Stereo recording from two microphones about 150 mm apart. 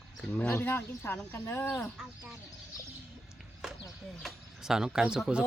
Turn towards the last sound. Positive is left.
turn(degrees=-5)  # may be behind; listen again after turning